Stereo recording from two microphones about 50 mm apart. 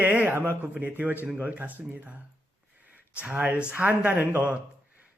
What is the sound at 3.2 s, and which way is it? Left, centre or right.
Speech, centre.